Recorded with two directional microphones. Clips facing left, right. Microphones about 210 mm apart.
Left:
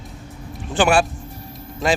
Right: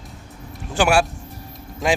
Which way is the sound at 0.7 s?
10° right (ahead or behind).